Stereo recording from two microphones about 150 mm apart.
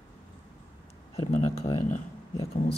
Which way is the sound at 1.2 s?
55° left (ahead or behind).